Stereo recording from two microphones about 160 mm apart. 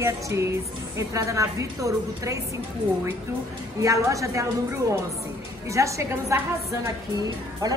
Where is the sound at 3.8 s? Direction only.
20° right (ahead or behind).